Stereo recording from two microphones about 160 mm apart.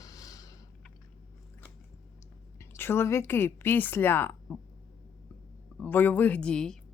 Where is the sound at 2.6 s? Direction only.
15° left (ahead or behind).